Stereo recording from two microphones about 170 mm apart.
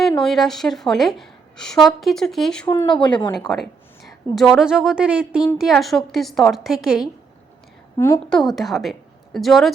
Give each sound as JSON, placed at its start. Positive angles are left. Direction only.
{"t": 0.2, "sound": "a woman's voice", "side_deg": 0}
{"t": 2.6, "sound": "speech", "side_deg": 25}
{"t": 3.3, "sound": "a woman's voice", "side_deg": 0}
{"t": 7.9, "sound": "a woman's voice", "side_deg": 15}
{"t": 8.3, "sound": "a woman's voice", "side_deg": 0}